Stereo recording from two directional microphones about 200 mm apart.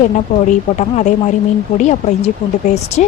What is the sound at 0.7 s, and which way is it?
Speech, 35° left (ahead or behind).